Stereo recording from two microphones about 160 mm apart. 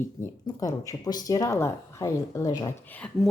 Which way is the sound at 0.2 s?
20° left (ahead or behind).